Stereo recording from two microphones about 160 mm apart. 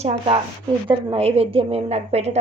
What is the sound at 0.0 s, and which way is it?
A woman's voice, 40° right (ahead or behind).